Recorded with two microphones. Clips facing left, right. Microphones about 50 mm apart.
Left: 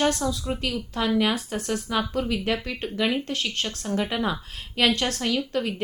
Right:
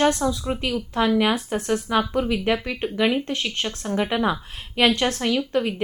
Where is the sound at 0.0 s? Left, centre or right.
Right.